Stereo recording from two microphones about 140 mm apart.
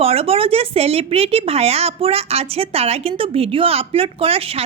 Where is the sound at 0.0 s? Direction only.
45° right (ahead or behind).